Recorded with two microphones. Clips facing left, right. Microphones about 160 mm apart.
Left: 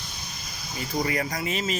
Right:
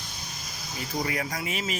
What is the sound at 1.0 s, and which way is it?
Speech, centre (ahead or behind).